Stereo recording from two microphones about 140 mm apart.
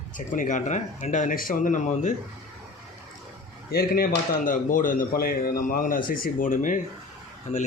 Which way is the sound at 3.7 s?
90° left.